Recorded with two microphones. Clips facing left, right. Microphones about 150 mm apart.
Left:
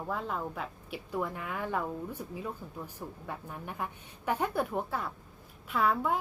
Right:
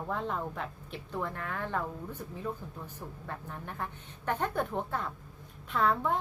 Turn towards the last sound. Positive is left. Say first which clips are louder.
# even
turn(degrees=5)  # may be behind; listen again after turning